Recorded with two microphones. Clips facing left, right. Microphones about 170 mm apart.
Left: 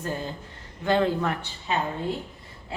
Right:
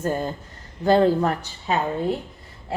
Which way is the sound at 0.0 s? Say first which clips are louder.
Right 6 dB; 45° right (ahead or behind).